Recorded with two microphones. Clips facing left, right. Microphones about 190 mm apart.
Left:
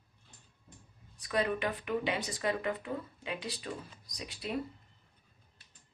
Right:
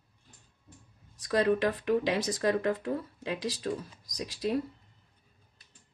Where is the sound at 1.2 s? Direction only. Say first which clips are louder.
Right 6 dB; 80° right.